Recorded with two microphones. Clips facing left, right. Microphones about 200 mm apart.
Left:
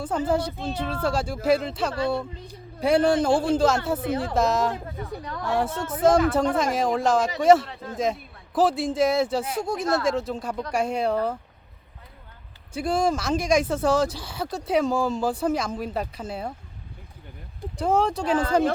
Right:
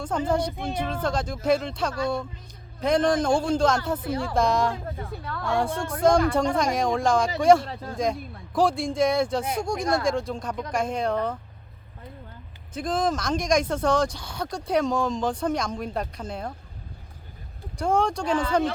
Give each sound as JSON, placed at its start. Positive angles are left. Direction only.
{"t": 0.3, "sound": "speech", "side_deg": 5}
{"t": 0.5, "sound": "speech", "side_deg": -10}
{"t": 1.0, "sound": "speech", "side_deg": 10}
{"t": 4.0, "sound": "speech", "side_deg": 25}
{"t": 4.4, "sound": "speech", "side_deg": 5}
{"t": 12.7, "sound": "speech", "side_deg": 10}
{"t": 17.7, "sound": "speech", "side_deg": 5}